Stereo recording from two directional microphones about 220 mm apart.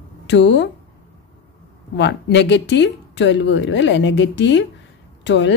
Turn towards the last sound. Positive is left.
turn(degrees=55)  # may be behind; listen again after turning